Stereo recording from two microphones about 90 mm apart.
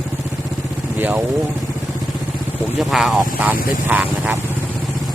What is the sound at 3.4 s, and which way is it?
Speech, 20° right (ahead or behind).